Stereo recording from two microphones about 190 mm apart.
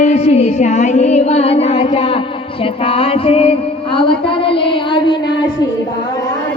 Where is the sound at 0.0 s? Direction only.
35° left (ahead or behind).